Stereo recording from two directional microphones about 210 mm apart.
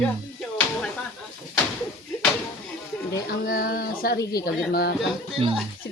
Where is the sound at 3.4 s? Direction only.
45° left (ahead or behind).